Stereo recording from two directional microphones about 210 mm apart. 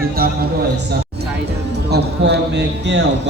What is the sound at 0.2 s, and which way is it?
Speech, 45° right (ahead or behind).